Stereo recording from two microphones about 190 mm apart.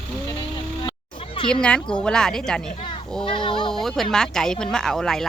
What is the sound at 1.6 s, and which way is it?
Speech, 5° left (ahead or behind).